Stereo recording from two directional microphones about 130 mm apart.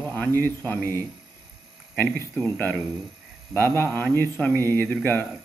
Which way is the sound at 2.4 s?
15° left (ahead or behind).